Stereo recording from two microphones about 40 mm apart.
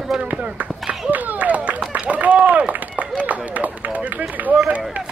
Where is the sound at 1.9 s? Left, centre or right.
Right.